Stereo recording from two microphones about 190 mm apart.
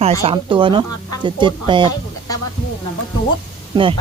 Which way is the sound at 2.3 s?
20° left (ahead or behind).